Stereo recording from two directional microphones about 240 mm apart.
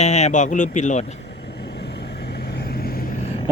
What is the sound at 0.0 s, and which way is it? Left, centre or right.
Speech, left.